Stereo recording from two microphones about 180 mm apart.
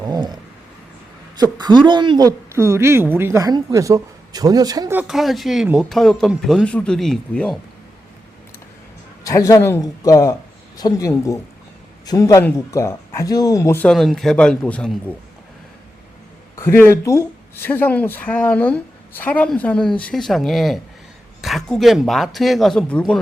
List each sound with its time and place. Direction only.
0.0 s a sound: 20° right (ahead or behind)
1.4 s speech: 25° right (ahead or behind)
4.9 s speech: centre (ahead or behind)
9.2 s speech: 15° left (ahead or behind)
16.6 s speech: 15° left (ahead or behind)